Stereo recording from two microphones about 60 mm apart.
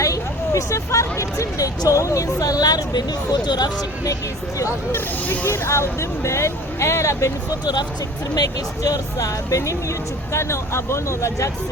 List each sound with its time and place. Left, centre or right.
0.0 s speech: left
4.9 s speech: left
5.5 s speech: left
8.4 s speech: left
10.3 s speech: left